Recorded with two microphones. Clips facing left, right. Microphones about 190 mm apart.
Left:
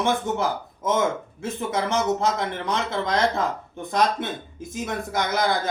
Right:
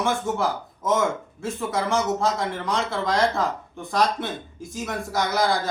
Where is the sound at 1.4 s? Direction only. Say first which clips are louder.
Even; 20° left (ahead or behind).